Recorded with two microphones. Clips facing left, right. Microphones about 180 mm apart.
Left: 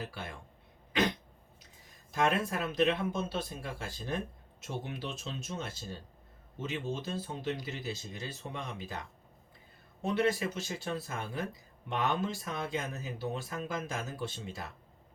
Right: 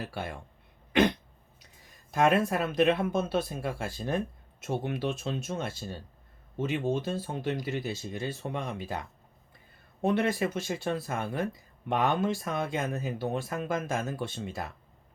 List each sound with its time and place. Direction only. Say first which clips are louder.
0.0 s speech: right 5 dB; 55° right (ahead or behind)
2.0 s speech: right 6 dB; 55° right (ahead or behind)
10.0 s speech: right 3 dB; 55° right (ahead or behind)